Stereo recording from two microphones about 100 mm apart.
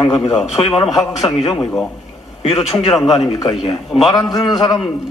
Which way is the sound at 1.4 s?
60° left (ahead or behind).